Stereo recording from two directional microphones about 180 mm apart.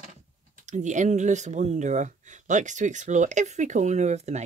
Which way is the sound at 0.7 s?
40° right (ahead or behind).